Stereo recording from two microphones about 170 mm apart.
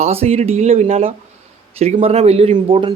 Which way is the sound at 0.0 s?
40° right (ahead or behind).